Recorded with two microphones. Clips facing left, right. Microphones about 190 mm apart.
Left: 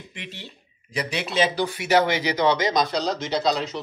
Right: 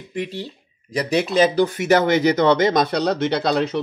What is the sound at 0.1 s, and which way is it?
Speech, 35° right (ahead or behind).